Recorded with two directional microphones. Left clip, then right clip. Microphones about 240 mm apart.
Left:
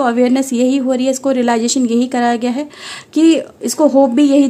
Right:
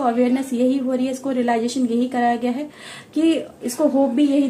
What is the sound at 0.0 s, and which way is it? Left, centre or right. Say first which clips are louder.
A woman's voice: left 6 dB; left.